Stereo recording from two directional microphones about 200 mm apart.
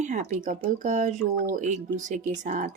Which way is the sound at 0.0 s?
35° right (ahead or behind).